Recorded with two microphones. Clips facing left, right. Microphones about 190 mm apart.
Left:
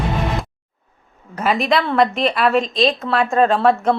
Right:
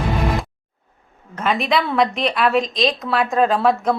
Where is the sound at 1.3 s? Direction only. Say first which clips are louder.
Left 2 dB; 5° left (ahead or behind).